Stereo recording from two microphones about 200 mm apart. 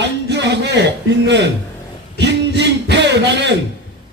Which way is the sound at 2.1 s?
60° right (ahead or behind).